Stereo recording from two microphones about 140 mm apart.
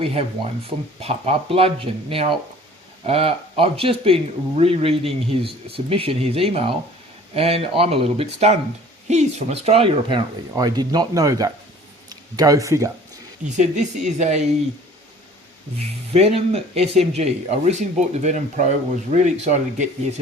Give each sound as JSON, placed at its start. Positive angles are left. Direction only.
{"t": 0.0, "sound": "speech", "side_deg": -50}
{"t": 10.5, "sound": "speech", "side_deg": -30}
{"t": 13.6, "sound": "speech", "side_deg": -55}
{"t": 16.1, "sound": "speech", "side_deg": -50}